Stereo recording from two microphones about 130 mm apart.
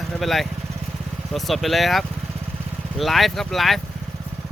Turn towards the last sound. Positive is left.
turn(degrees=0)  # may be behind; listen again after turning